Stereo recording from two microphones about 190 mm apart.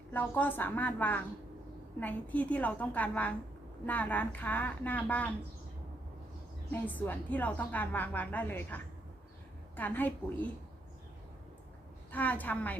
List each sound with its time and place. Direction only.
0.1 s a woman's voice: 10° left (ahead or behind)
6.7 s a woman's voice: 10° left (ahead or behind)
12.1 s a woman's voice: 10° left (ahead or behind)